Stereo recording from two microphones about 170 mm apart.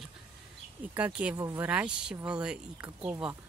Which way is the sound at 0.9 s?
10° right (ahead or behind).